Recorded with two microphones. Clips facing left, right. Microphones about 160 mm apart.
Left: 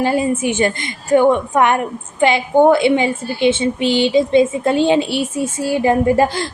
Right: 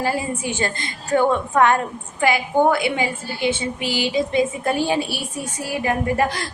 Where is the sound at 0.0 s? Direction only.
20° left (ahead or behind).